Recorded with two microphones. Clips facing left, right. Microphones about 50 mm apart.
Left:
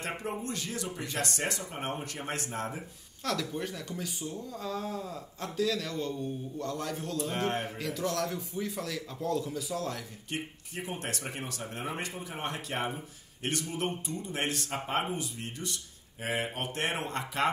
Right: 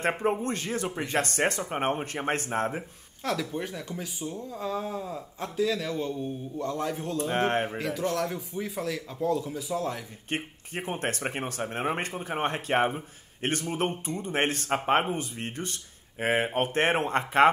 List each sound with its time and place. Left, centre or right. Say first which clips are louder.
0.2 s speech: right 8 dB; right
3.3 s speech: right 3 dB; centre
7.2 s speech: right 6 dB; right
7.7 s speech: right 4 dB; centre
10.3 s speech: right 5 dB; right